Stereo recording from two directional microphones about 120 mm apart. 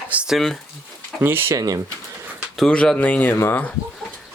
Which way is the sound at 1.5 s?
30° right (ahead or behind).